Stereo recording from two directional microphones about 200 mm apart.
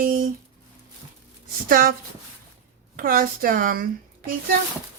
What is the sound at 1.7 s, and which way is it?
Speech, 45° right (ahead or behind).